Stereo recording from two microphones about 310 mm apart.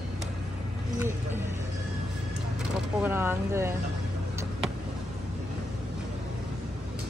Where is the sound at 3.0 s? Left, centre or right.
Centre.